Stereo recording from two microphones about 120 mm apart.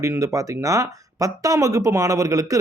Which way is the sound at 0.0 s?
25° right (ahead or behind).